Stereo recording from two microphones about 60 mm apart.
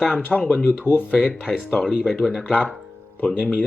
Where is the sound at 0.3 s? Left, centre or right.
Left.